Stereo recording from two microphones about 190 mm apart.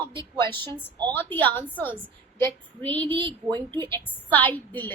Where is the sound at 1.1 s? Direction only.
10° left (ahead or behind).